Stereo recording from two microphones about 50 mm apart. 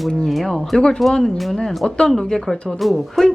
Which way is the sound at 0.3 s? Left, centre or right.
Centre.